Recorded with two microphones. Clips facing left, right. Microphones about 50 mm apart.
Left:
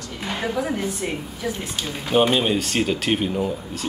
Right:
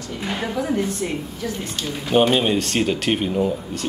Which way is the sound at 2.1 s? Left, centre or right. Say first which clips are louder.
Right 1 dB; centre.